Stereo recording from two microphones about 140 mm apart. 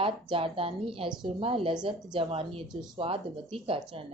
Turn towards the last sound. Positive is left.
turn(degrees=-40)  # may be behind; listen again after turning